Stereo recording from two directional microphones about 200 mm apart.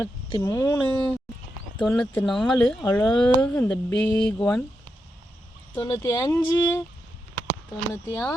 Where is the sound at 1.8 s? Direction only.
5° left (ahead or behind).